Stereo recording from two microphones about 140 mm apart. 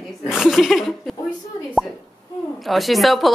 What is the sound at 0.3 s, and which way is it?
Laughter, centre (ahead or behind).